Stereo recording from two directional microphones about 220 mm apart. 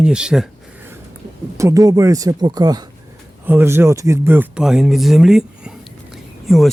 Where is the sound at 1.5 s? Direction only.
15° right (ahead or behind).